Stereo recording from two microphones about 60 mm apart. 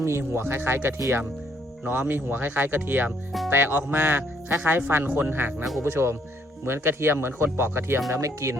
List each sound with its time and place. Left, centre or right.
0.0 s speech: right